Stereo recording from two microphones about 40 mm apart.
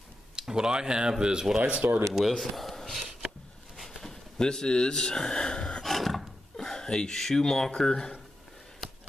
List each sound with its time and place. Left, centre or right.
0.4 s speech: centre
1.6 s speech: right
2.3 s speech: centre
3.0 s a sound: centre
4.4 s speech: centre
5.9 s filing: centre
8.8 s a sound: centre